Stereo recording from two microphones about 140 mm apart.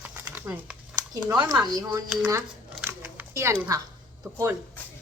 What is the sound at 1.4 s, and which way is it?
Speech, 30° right (ahead or behind).